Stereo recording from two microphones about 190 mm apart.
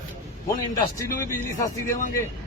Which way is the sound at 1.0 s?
15° left (ahead or behind).